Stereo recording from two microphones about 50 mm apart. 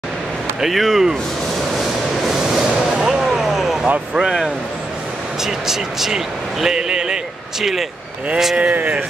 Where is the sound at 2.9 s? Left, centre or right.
Centre.